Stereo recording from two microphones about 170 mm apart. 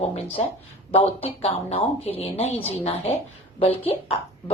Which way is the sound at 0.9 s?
35° left (ahead or behind).